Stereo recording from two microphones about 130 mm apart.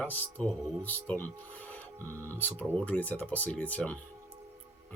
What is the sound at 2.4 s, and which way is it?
Speech, 15° left (ahead or behind).